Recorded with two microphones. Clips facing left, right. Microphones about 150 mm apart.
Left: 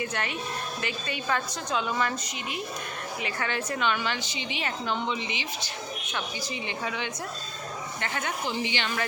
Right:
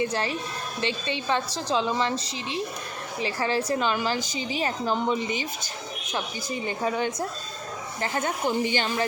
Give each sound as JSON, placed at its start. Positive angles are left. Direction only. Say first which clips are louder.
{"t": 0.0, "sound": "a woman's voice", "louder": "right 5 dB", "side_deg": -30}